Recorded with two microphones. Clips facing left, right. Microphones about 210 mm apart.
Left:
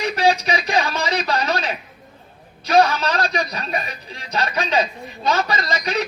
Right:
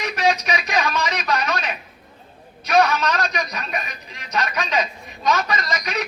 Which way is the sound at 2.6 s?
30° left (ahead or behind).